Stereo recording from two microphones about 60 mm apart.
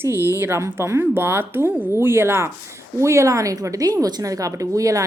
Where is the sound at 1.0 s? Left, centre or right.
Right.